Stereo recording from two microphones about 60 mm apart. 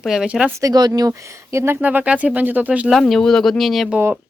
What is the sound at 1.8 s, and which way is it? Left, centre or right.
Speech, right.